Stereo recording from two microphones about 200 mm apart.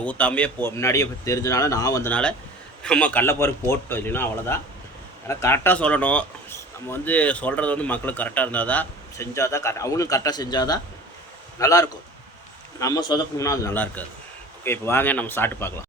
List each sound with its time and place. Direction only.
0.0 s speech: 5° left (ahead or behind)